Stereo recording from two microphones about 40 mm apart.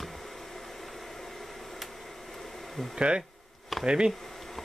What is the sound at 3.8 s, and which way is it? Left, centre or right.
Speech, right.